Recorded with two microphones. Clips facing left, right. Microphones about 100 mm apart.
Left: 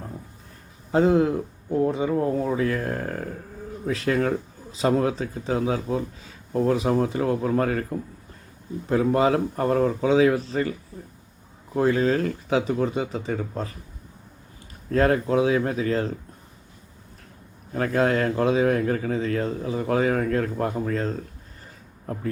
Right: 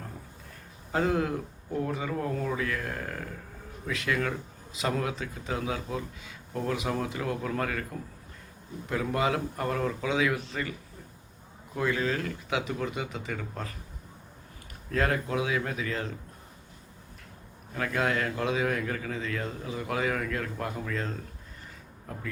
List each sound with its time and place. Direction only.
0.9 s speech: 25° left (ahead or behind)
8.9 s speech: 35° left (ahead or behind)
14.8 s speech: 35° left (ahead or behind)
17.7 s speech: 35° left (ahead or behind)